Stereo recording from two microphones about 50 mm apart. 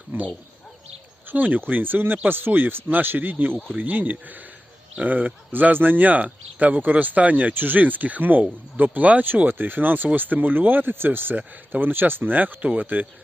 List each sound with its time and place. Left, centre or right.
1.3 s speech: right